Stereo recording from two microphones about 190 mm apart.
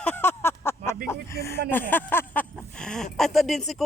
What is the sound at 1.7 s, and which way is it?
Speech, 10° left (ahead or behind).